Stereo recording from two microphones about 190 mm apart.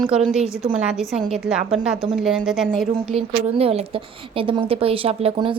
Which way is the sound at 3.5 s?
30° right (ahead or behind).